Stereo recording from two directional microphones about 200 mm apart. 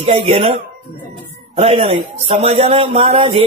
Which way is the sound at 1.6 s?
30° right (ahead or behind).